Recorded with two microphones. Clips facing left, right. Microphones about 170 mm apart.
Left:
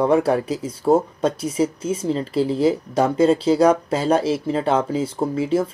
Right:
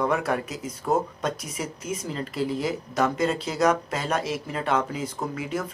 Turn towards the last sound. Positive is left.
turn(degrees=30)  # may be behind; listen again after turning